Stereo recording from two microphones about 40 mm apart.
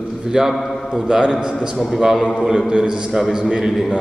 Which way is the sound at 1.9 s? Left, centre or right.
Centre.